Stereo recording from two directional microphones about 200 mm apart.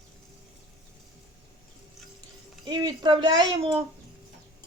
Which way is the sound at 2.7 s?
20° right (ahead or behind).